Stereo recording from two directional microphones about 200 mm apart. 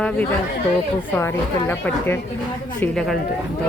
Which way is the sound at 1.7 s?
10° left (ahead or behind).